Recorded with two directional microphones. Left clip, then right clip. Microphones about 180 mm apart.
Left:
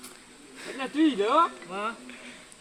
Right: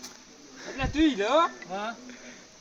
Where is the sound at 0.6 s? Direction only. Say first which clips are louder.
Even; 15° right (ahead or behind).